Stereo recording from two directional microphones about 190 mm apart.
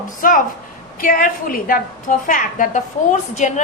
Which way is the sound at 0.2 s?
45° left (ahead or behind).